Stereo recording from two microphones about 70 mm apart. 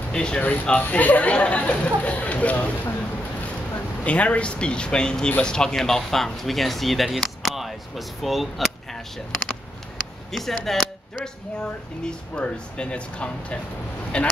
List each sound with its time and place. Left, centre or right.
0.1 s speech: centre
0.4 s speech: left
4.0 s speech: centre
10.3 s speech: centre